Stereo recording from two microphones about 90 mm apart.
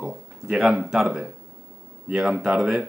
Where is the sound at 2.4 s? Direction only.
10° right (ahead or behind).